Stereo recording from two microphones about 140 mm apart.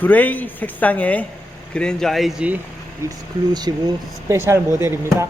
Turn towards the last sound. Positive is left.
turn(degrees=-20)  # may be behind; listen again after turning